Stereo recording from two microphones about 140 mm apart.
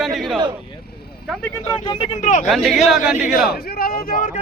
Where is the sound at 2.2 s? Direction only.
60° left (ahead or behind).